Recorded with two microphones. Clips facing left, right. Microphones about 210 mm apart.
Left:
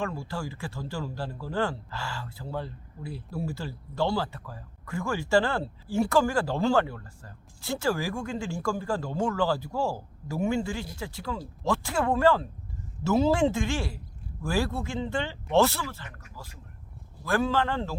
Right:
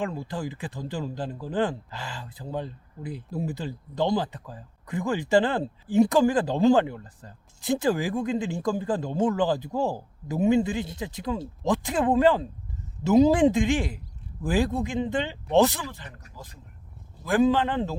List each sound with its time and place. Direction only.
0.0 s speech: 15° right (ahead or behind)
17.2 s speech: 15° right (ahead or behind)